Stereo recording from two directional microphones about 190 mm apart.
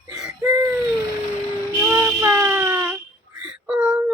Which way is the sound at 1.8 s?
10° right (ahead or behind).